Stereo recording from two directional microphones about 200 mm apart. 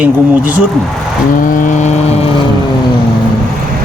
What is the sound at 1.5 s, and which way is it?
Vehicle, 40° left (ahead or behind).